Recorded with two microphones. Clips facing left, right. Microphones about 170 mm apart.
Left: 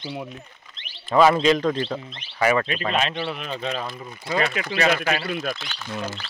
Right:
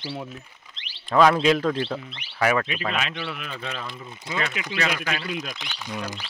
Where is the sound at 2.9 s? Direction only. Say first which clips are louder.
Left 5 dB; 30° left (ahead or behind).